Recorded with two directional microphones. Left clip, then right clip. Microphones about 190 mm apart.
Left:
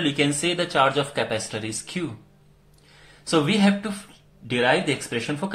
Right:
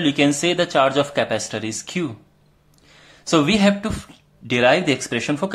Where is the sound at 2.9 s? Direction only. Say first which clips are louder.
Right 5 dB; 35° right (ahead or behind).